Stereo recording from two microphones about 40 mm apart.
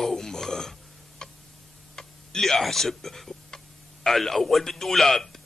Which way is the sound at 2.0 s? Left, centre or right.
Centre.